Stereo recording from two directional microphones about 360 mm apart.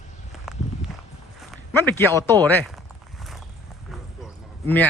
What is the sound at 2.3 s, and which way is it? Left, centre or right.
Speech, centre.